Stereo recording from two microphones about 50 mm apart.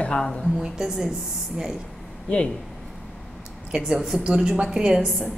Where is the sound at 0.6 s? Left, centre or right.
Centre.